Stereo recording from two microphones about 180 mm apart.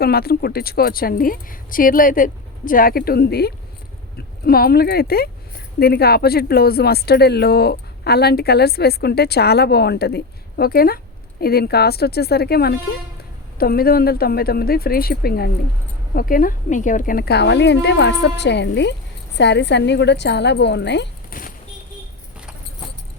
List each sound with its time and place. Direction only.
0.0 s a woman's voice: 60° left (ahead or behind)